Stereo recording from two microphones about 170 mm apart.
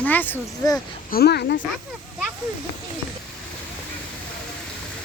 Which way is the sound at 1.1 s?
70° left (ahead or behind).